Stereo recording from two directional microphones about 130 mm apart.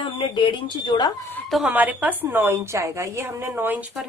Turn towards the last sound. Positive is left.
turn(degrees=-10)  # may be behind; listen again after turning